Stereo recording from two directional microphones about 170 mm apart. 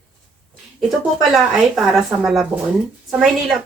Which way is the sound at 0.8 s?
Centre (ahead or behind).